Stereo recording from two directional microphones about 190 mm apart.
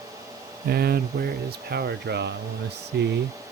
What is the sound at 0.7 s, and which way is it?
Speech, 55° right (ahead or behind).